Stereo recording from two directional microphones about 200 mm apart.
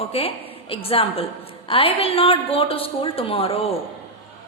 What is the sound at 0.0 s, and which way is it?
A woman's voice, 30° left (ahead or behind).